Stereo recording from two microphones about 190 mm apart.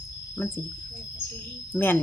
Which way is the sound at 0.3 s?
10° left (ahead or behind).